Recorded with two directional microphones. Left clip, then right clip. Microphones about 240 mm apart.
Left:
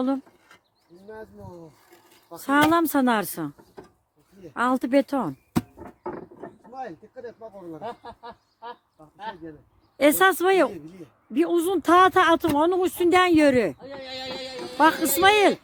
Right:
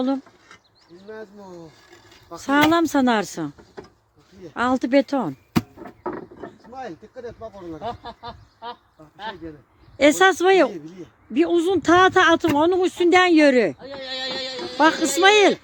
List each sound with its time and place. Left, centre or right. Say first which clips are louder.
0.0 s a sound: right 2 dB; centre
1.1 s speech: right 3 dB; centre
4.5 s speech: right 3 dB; centre
5.8 s a sound: right 4 dB; centre
10.0 s speech: right 3 dB; centre
10.7 s speech: right 4 dB; centre
11.3 s speech: right 3 dB; centre
13.7 s speech: right 5 dB; centre
14.8 s speech: right 2 dB; centre